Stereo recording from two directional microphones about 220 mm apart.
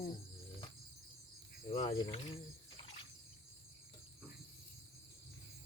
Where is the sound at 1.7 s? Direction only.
25° left (ahead or behind).